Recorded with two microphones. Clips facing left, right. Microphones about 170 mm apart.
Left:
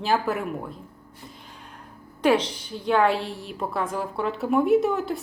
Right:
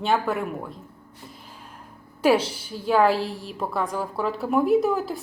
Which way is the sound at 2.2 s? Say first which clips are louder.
Right 1 dB; 5° right (ahead or behind).